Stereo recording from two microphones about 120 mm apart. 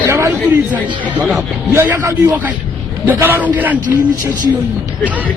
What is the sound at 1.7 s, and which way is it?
A man's voice, 25° right (ahead or behind).